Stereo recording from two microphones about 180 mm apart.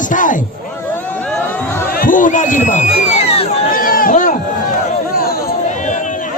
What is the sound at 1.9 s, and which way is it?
Speech, 50° left (ahead or behind).